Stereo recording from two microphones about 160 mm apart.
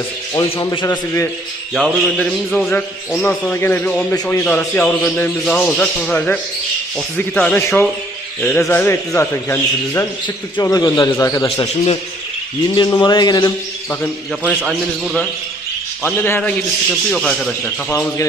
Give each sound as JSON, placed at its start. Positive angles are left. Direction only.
{"t": 0.3, "sound": "a man's voice", "side_deg": 20}
{"t": 1.7, "sound": "a man's voice", "side_deg": 0}
{"t": 10.2, "sound": "a man's voice", "side_deg": 25}
{"t": 11.4, "sound": "a man's voice", "side_deg": 40}
{"t": 12.7, "sound": "a man's voice", "side_deg": 30}
{"t": 14.4, "sound": "a man's voice", "side_deg": -10}
{"t": 16.0, "sound": "a man's voice", "side_deg": 10}